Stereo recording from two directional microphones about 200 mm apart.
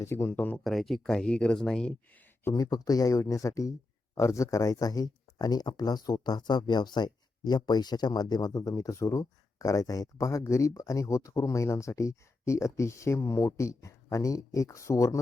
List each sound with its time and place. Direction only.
0.0 s speech: 15° left (ahead or behind)
2.4 s speech: 15° left (ahead or behind)